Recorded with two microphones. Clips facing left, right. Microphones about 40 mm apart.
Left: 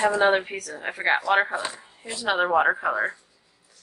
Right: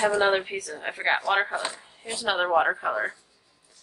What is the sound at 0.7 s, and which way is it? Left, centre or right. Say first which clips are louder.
Speech: left 2 dB; centre.